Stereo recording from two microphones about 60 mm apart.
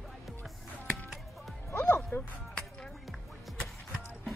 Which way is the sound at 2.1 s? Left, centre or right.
Left.